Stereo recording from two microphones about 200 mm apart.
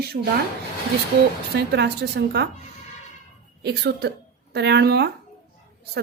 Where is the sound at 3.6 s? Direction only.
55° right (ahead or behind).